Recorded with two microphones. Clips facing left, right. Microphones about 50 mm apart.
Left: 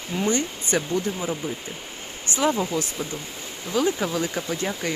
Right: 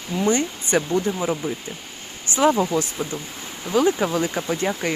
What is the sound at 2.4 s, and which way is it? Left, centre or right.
Speech, right.